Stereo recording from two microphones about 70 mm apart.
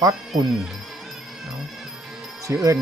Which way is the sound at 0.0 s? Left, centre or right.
Right.